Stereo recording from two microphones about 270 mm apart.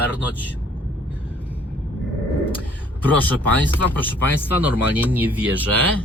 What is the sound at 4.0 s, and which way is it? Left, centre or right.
Speech, centre.